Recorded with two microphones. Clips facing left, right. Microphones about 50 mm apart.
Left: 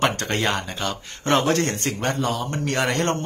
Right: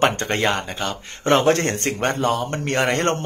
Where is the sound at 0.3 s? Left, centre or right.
Centre.